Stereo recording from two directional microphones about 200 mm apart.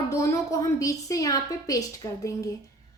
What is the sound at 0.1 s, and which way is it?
A woman's voice, 15° left (ahead or behind).